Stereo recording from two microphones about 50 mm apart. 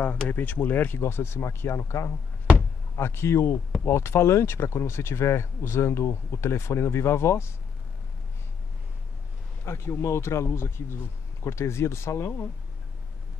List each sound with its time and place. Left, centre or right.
0.0 s speech: left
1.0 s speech: left
9.7 s speech: left